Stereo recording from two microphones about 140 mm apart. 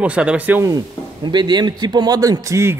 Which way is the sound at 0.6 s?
25° right (ahead or behind).